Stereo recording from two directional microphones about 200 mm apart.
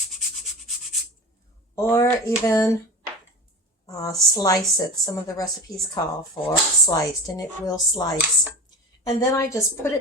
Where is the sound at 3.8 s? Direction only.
20° left (ahead or behind).